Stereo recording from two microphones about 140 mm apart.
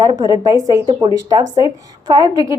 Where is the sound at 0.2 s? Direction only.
25° right (ahead or behind).